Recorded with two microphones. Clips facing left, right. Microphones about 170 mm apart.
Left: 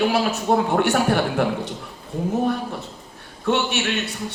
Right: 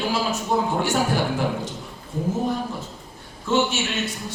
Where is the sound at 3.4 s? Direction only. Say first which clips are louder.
Even; 60° left (ahead or behind).